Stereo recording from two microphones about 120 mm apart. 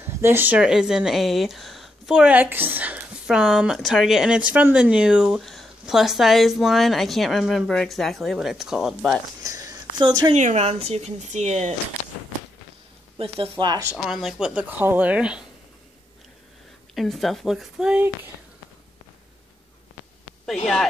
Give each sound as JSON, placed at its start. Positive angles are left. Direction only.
{"t": 0.0, "sound": "speech", "side_deg": -20}
{"t": 9.4, "sound": "speech", "side_deg": -30}
{"t": 10.3, "sound": "speech", "side_deg": -70}
{"t": 13.2, "sound": "speech", "side_deg": -50}
{"t": 13.7, "sound": "speech", "side_deg": -30}
{"t": 14.0, "sound": "speech", "side_deg": -5}
{"t": 16.9, "sound": "speech", "side_deg": 0}